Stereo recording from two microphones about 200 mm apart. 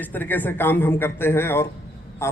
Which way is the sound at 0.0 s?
10° left (ahead or behind).